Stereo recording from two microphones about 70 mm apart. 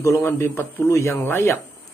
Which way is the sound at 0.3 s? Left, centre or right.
Left.